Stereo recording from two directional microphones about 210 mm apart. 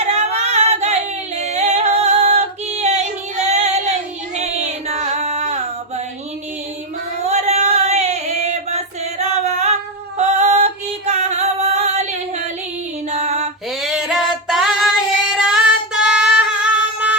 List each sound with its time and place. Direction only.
0.0 s singing: 30° right (ahead or behind)
1.4 s female singing: 30° right (ahead or behind)
4.4 s music: 30° right (ahead or behind)
7.2 s female singing: 30° right (ahead or behind)
10.2 s music: 30° right (ahead or behind)
13.8 s female singing: centre (ahead or behind)
15.5 s singing: 5° right (ahead or behind)